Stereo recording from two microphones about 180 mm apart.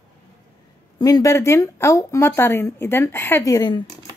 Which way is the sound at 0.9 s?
20° left (ahead or behind).